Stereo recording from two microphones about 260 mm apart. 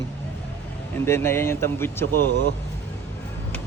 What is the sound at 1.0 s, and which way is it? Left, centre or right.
Speech, centre.